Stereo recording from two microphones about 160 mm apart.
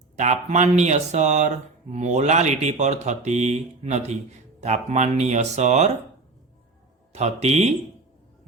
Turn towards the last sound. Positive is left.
turn(degrees=-45)  # may be behind; listen again after turning